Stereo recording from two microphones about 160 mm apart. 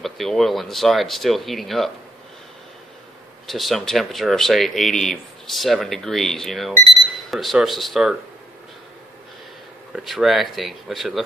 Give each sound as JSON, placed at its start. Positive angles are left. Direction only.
{"t": 0.0, "sound": "speech", "side_deg": 0}
{"t": 3.4, "sound": "speech", "side_deg": 0}
{"t": 9.9, "sound": "speech", "side_deg": 0}